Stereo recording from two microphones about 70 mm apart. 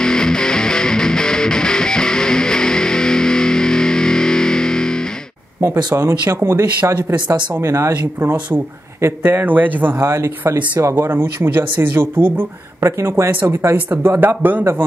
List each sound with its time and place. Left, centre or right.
0.0 s music: centre
6.2 s speech: right
7.1 s speech: right
7.6 s speech: right
7.9 s speech: right
10.0 s speech: right
12.8 s speech: right
14.0 s speech: right